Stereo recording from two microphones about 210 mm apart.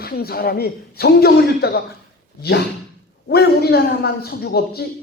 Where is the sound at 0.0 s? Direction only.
45° left (ahead or behind).